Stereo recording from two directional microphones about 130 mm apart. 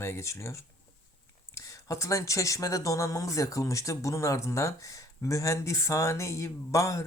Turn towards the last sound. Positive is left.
turn(degrees=25)  # may be behind; listen again after turning